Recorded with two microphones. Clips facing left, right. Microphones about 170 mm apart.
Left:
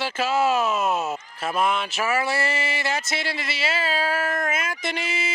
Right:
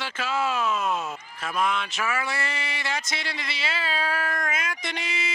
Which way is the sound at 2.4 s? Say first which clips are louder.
Left 6 dB; 5° left (ahead or behind).